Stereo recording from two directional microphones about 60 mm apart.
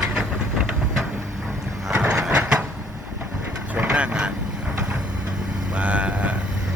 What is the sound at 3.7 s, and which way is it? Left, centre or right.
Vehicle, centre.